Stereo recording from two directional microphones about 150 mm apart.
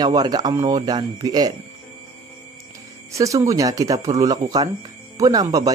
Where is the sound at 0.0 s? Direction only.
25° right (ahead or behind).